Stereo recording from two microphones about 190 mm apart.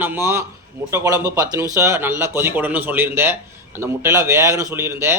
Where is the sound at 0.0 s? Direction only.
10° right (ahead or behind).